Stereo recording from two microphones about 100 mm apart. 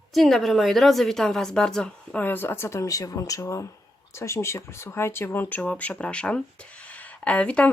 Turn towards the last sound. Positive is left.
turn(degrees=10)  # may be behind; listen again after turning